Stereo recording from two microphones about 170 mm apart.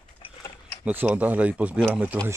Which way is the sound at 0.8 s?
10° right (ahead or behind).